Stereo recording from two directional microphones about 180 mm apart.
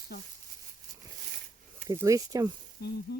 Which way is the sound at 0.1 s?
55° left (ahead or behind).